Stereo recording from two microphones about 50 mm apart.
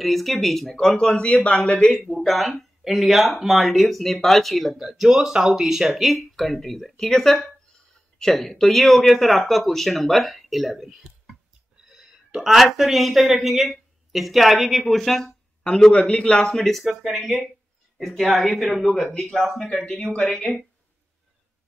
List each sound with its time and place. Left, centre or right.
0.0 s speech: centre
0.7 s speech: centre
2.1 s speech: centre
15.6 s a man's voice: centre
17.0 s speech: centre
19.8 s speech: centre